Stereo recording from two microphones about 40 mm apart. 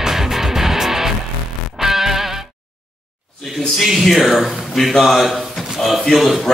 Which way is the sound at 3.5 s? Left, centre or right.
Centre.